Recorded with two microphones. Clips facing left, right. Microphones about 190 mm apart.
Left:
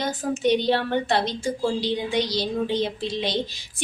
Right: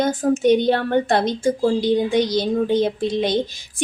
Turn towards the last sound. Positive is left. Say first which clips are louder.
# right 7 dB
turn(degrees=-50)  # may be behind; listen again after turning